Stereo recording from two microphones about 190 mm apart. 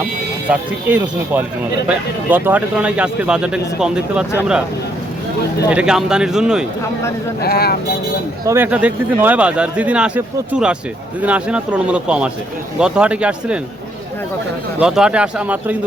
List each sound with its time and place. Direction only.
0.4 s speech: 5° right (ahead or behind)
5.7 s speech: 5° right (ahead or behind)
7.4 s speech: 55° left (ahead or behind)
8.4 s speech: 10° right (ahead or behind)
14.8 s speech: 5° right (ahead or behind)